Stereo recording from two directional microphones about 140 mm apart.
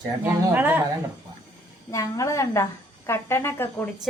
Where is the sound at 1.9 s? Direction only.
25° left (ahead or behind).